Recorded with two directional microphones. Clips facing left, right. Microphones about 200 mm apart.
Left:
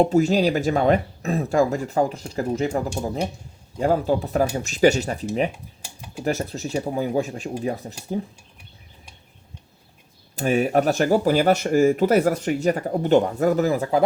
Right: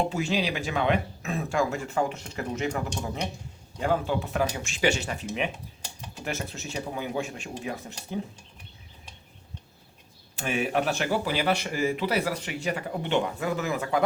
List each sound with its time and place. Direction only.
0.0 s speech: 40° left (ahead or behind)
5.8 s typing: 10° left (ahead or behind)
6.2 s speech: 35° left (ahead or behind)
10.3 s speech: 40° left (ahead or behind)